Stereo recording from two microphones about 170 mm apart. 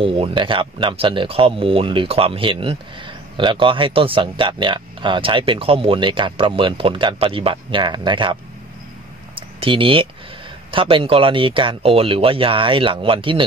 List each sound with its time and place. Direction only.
0.0 s a man's voice: 30° right (ahead or behind)
9.3 s a sound: 30° right (ahead or behind)
10.7 s speech: 30° right (ahead or behind)